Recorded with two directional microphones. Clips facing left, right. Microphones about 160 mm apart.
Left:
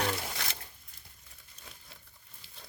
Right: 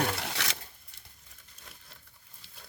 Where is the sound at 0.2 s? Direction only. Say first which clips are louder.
Right 3 dB; 85° right.